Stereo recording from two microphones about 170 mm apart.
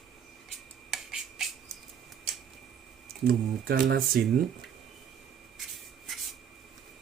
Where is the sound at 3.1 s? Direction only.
60° right (ahead or behind).